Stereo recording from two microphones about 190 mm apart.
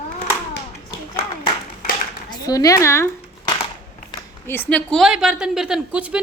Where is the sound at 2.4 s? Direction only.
20° left (ahead or behind).